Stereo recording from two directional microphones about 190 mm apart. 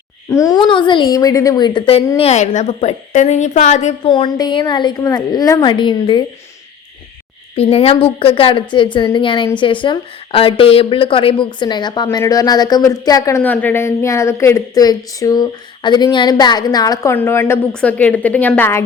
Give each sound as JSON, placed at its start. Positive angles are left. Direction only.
{"t": 0.3, "sound": "a woman's voice", "side_deg": 15}
{"t": 4.1, "sound": "speech", "side_deg": 25}
{"t": 7.5, "sound": "speech", "side_deg": 30}